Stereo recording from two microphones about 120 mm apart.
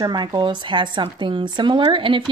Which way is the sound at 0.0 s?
35° right (ahead or behind).